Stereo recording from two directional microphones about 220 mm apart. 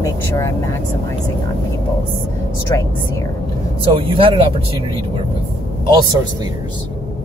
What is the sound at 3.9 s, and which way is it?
Speech, 25° right (ahead or behind).